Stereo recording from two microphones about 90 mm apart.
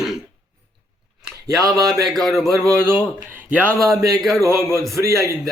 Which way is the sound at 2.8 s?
25° right (ahead or behind).